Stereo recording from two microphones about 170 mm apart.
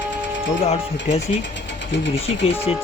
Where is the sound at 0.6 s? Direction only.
35° left (ahead or behind).